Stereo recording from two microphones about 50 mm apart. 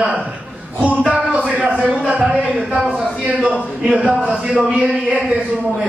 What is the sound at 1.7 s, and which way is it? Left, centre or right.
Speech, right.